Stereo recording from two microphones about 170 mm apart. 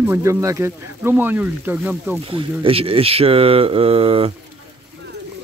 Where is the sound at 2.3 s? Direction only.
35° right (ahead or behind).